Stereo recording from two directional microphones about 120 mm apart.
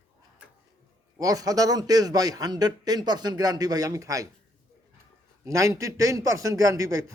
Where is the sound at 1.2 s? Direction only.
30° right (ahead or behind).